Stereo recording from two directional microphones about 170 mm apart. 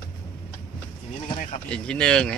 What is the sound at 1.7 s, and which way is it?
Speech, 5° left (ahead or behind).